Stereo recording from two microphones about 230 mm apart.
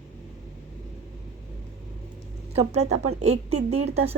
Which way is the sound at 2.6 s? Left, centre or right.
Right.